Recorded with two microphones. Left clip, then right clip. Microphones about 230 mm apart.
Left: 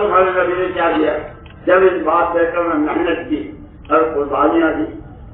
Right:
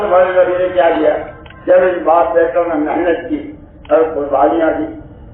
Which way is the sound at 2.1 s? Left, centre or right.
Left.